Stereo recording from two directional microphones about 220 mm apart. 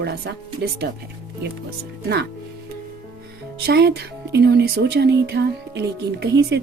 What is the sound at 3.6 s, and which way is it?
Speech, 45° right (ahead or behind).